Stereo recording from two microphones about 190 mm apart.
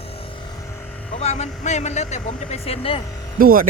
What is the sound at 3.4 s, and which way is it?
Speech, 50° right (ahead or behind).